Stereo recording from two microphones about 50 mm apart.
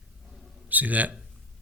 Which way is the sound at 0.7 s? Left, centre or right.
Right.